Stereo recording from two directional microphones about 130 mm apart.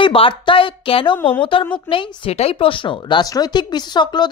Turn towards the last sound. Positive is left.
turn(degrees=35)  # may be behind; listen again after turning